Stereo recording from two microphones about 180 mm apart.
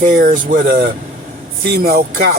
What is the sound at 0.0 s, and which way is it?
Speech, 45° right (ahead or behind).